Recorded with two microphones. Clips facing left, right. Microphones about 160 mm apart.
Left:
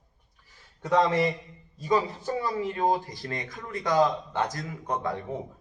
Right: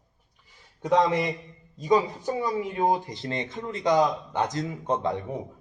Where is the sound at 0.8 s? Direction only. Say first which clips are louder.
Right 1 dB; 20° right (ahead or behind).